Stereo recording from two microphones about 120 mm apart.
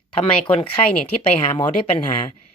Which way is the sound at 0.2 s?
50° left (ahead or behind).